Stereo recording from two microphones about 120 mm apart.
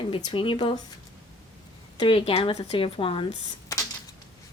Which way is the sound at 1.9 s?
45° left (ahead or behind).